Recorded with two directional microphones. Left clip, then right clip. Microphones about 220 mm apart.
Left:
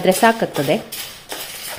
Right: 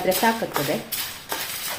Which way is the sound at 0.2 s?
45° left (ahead or behind).